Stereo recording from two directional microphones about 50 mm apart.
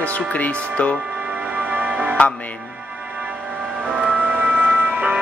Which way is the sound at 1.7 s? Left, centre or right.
Right.